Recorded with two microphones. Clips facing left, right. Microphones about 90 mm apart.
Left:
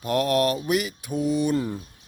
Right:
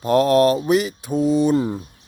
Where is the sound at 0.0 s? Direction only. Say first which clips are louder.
Right 7 dB; 30° right (ahead or behind).